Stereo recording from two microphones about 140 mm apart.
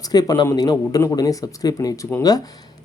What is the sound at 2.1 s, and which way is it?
Speech, 15° left (ahead or behind).